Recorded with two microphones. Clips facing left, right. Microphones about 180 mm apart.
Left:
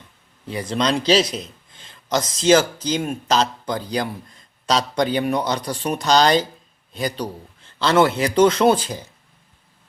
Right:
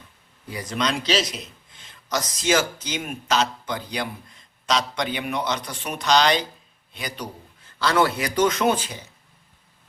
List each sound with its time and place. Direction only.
0.4 s speech: 25° left (ahead or behind)
7.8 s a man's voice: 25° left (ahead or behind)